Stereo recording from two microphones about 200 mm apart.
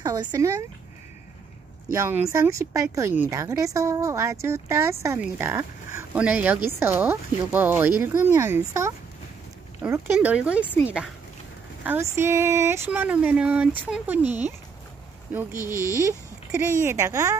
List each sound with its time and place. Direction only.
0.0 s speech: 20° right (ahead or behind)
1.9 s speech: 15° right (ahead or behind)
11.8 s speech: 10° right (ahead or behind)
15.6 s speech: 15° left (ahead or behind)
15.9 s speech: 15° right (ahead or behind)